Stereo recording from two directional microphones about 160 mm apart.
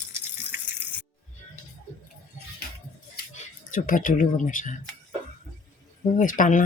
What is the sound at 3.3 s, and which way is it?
Speech, 55° left (ahead or behind).